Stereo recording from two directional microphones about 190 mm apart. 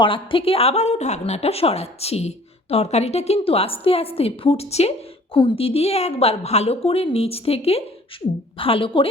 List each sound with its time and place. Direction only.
0.0 s a woman's voice: 25° left (ahead or behind)